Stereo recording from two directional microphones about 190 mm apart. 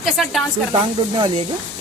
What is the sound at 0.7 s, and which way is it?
Speech, 25° right (ahead or behind).